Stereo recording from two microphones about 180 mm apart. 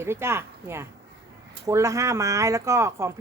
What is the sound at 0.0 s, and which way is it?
Speech, 15° right (ahead or behind).